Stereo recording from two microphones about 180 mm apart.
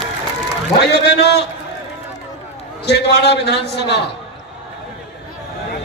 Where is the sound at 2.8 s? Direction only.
70° left (ahead or behind).